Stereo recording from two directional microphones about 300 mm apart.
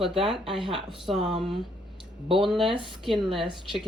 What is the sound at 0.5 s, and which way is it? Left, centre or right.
A woman's voice, centre.